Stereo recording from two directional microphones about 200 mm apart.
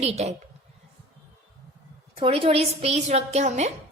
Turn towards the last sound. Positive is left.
turn(degrees=-35)  # may be behind; listen again after turning